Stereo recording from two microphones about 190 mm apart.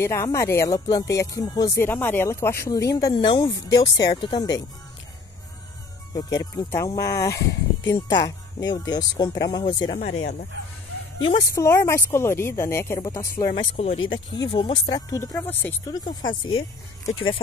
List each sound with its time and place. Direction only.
0.0 s speech: 15° left (ahead or behind)
6.1 s speech: 15° left (ahead or behind)
9.9 s speech: 35° left (ahead or behind)
11.5 s speech: 15° left (ahead or behind)
13.5 s speech: 30° left (ahead or behind); by 16.0 s 10° left (ahead or behind)